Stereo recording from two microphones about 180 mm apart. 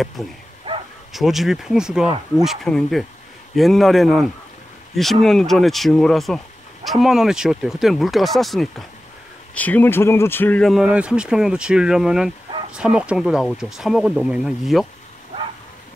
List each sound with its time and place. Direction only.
0.2 s speech: 5° left (ahead or behind)